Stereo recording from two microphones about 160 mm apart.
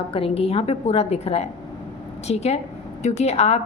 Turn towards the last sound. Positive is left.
turn(degrees=45)  # may be behind; listen again after turning